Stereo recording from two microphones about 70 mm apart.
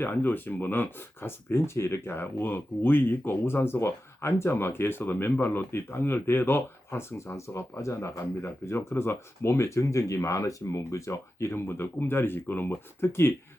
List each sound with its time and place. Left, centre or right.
0.0 s speech: left